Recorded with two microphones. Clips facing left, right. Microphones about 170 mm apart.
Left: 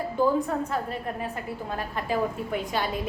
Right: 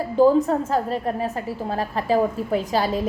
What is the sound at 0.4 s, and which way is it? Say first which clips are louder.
A woman's voice: right 6 dB; 35° right (ahead or behind).